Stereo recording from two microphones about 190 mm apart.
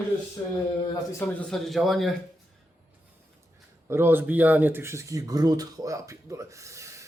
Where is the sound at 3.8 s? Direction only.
10° right (ahead or behind).